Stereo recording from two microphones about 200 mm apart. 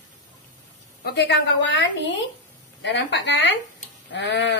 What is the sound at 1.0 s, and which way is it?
A woman's voice, 55° left (ahead or behind).